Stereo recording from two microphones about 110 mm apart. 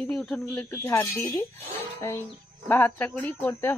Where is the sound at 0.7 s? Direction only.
25° left (ahead or behind).